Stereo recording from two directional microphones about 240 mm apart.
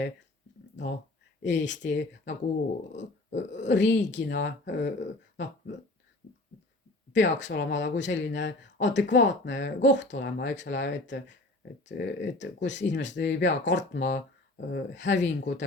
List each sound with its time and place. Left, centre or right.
1.5 s speech: left
7.1 s speech: left